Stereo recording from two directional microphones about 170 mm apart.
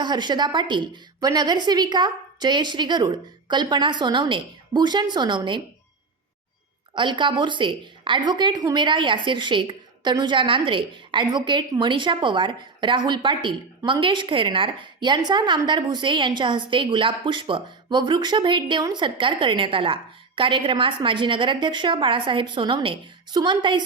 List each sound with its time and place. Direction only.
0.0 s a woman's voice: 25° right (ahead or behind)
6.9 s a woman's voice: 30° right (ahead or behind)